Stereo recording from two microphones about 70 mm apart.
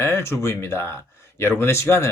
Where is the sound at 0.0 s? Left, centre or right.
Left.